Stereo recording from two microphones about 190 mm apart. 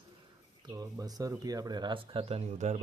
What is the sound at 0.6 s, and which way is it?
Speech, 20° right (ahead or behind).